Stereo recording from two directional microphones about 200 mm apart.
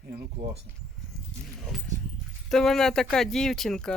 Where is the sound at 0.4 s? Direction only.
60° right (ahead or behind).